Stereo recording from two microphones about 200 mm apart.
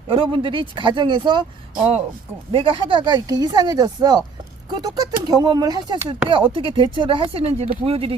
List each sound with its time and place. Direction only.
0.1 s speech: 25° right (ahead or behind)